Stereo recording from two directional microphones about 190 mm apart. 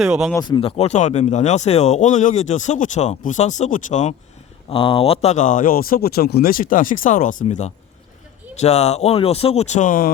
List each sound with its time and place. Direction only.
0.0 s speech: centre (ahead or behind)
0.3 s speech: 20° left (ahead or behind); by 4.1 s 40° left (ahead or behind)
4.7 s speech: 30° left (ahead or behind); by 10.1 s 45° left (ahead or behind)